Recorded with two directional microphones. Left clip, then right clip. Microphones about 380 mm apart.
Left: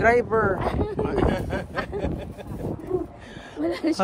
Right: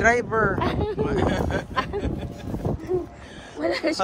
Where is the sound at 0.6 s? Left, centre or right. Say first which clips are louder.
Right 1 dB; centre.